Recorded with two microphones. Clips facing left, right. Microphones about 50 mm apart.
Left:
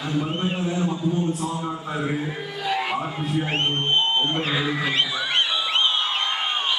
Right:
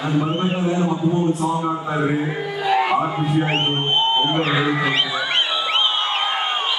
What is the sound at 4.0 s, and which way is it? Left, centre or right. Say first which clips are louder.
Speech: right 4 dB; centre.